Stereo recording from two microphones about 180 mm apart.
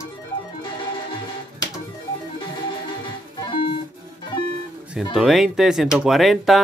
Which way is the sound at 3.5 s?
25° left (ahead or behind).